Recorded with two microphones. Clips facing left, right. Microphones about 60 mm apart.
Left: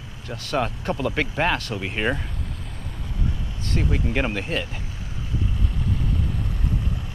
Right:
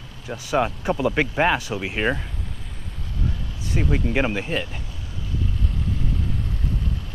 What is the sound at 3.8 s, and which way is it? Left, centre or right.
Speech, centre.